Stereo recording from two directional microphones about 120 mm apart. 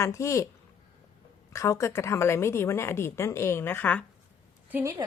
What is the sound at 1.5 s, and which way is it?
A woman's voice, 25° left (ahead or behind).